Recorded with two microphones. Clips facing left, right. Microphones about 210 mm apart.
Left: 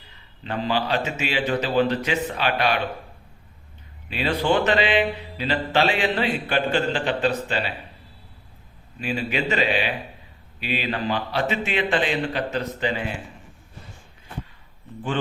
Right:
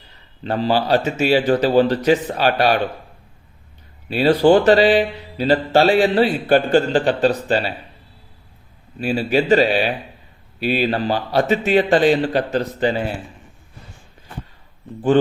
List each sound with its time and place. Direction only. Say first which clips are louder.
0.4 s speech: right 6 dB; 40° right (ahead or behind)
4.1 s speech: right 9 dB; 40° right (ahead or behind)
9.0 s speech: right 8 dB; 35° right (ahead or behind)